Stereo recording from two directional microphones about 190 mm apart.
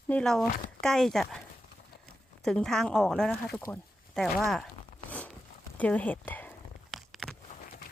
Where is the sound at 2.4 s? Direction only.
5° left (ahead or behind).